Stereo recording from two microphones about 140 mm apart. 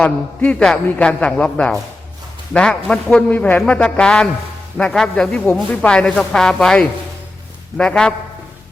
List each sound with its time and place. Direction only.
0.0 s a man's voice: 5° left (ahead or behind)